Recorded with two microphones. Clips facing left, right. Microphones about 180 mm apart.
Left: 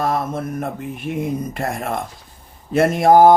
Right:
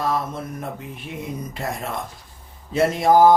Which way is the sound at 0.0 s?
50° left (ahead or behind).